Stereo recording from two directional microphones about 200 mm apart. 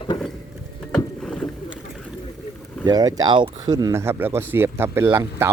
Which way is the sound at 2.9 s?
20° right (ahead or behind).